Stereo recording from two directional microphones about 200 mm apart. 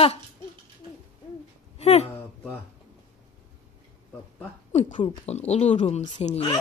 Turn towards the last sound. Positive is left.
turn(degrees=30)  # may be behind; listen again after turning